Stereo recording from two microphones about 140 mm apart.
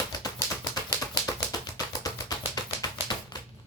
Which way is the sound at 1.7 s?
30° left (ahead or behind).